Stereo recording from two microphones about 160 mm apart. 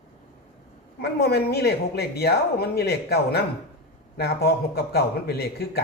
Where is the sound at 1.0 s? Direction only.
85° left.